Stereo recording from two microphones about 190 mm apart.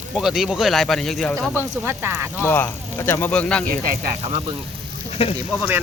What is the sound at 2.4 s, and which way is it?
Speech, 15° left (ahead or behind).